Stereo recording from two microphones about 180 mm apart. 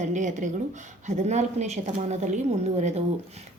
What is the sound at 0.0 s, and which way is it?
Speech, 45° right (ahead or behind).